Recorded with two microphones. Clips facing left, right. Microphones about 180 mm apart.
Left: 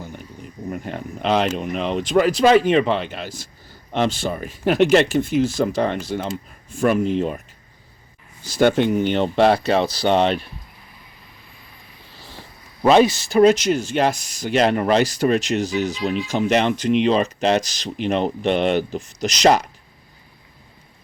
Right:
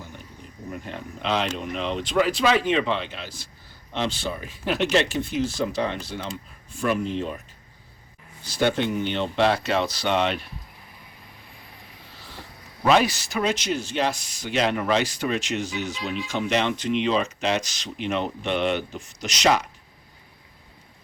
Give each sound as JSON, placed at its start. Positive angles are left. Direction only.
{"t": 0.7, "sound": "speech", "side_deg": 50}
{"t": 8.4, "sound": "speech", "side_deg": 45}
{"t": 12.1, "sound": "vehicle", "side_deg": 30}
{"t": 12.8, "sound": "speech", "side_deg": 25}
{"t": 13.4, "sound": "speech", "side_deg": 45}